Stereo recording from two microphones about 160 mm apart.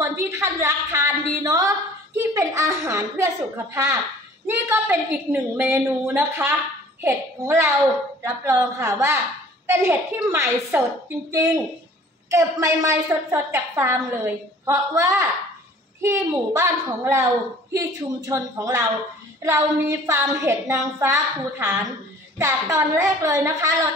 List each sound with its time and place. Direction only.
0.0 s a sound: 15° right (ahead or behind)
2.3 s a woman's voice: 15° right (ahead or behind)
12.3 s a woman's voice: 20° right (ahead or behind)